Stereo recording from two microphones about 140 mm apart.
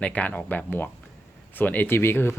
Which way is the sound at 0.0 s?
10° left (ahead or behind).